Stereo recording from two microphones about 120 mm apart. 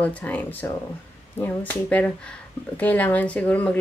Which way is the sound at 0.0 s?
10° left (ahead or behind).